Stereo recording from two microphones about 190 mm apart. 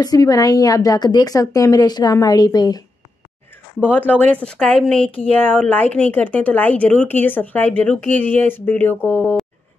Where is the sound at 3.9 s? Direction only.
10° left (ahead or behind).